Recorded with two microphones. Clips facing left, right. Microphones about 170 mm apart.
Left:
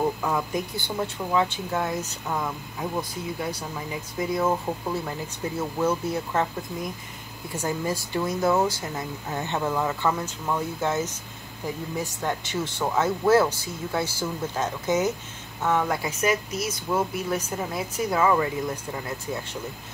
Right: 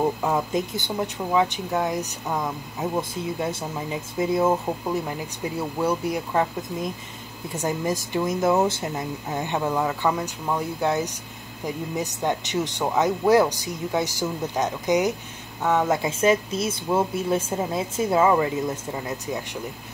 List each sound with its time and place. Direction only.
0.0 s speech: 20° right (ahead or behind)